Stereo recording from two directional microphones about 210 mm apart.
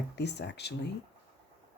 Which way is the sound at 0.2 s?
55° left (ahead or behind).